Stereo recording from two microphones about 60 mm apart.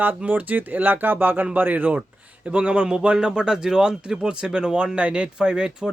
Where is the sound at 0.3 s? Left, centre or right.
Right.